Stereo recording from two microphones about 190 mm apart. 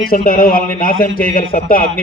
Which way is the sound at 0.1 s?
50° left (ahead or behind).